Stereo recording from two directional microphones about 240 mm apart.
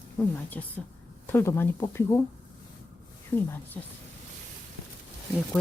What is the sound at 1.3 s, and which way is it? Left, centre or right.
Speech, centre.